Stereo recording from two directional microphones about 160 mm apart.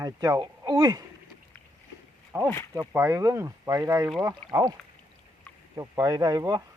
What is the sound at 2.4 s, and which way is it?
Speech, 15° left (ahead or behind).